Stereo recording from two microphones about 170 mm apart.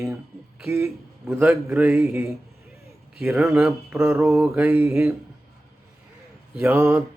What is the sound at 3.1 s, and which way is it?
Mantra, 5° right (ahead or behind).